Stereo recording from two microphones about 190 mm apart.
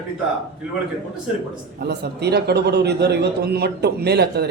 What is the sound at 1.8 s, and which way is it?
A man's voice, 60° right (ahead or behind).